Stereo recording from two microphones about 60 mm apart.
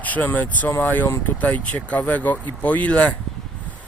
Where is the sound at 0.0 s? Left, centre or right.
Left.